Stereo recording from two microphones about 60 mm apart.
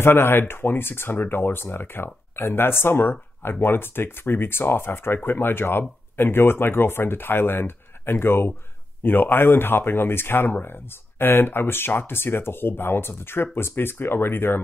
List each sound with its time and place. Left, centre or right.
0.0 s speech: left